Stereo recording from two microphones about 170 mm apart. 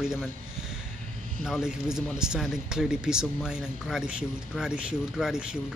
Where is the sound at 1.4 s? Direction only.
5° right (ahead or behind).